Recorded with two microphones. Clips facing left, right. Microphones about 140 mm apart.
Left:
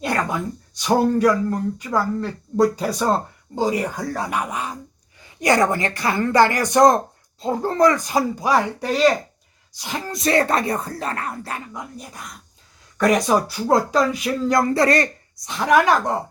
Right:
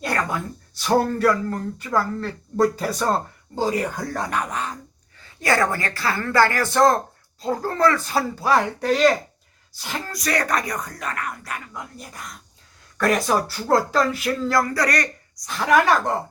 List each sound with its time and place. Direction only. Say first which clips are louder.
0.0 s a sound: left 2 dB; 20° left (ahead or behind)
0.8 s speech: left 2 dB; 15° left (ahead or behind)
2.8 s speech: left 2 dB; centre (ahead or behind)
3.5 s speech: left 1 dB; 10° left (ahead or behind)
9.7 s speech: left 2 dB; 20° left (ahead or behind)
13.2 s speech: left 3 dB; 15° left (ahead or behind)
15.7 s speech: left 1 dB; centre (ahead or behind)